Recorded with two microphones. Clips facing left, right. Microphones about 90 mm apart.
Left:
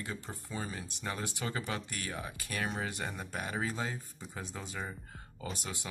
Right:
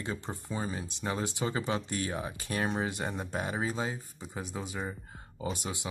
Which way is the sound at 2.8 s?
25° right (ahead or behind).